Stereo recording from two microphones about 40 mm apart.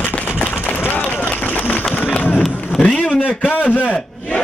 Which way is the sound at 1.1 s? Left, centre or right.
Left.